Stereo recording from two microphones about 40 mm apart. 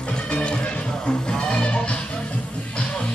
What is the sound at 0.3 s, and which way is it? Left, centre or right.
Music, left.